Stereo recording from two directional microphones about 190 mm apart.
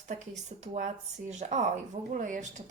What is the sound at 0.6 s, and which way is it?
Speech, 40° right (ahead or behind).